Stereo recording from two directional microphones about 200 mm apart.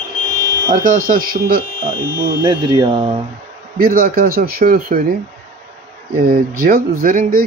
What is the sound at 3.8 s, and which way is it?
Speech, 45° right (ahead or behind).